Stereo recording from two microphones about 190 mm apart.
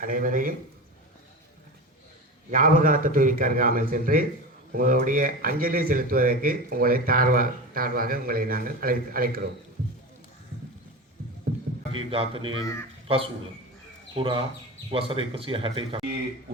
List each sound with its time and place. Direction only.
0.0 s speech: 45° right (ahead or behind)
2.5 s speech: 45° right (ahead or behind)
11.9 s speech: 30° right (ahead or behind)